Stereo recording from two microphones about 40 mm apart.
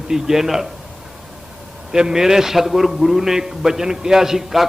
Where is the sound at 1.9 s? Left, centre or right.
Centre.